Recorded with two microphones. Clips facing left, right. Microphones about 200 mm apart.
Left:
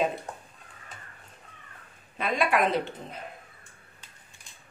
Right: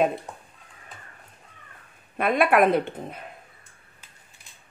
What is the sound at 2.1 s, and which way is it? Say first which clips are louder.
Speech: right 6 dB; 55° right (ahead or behind).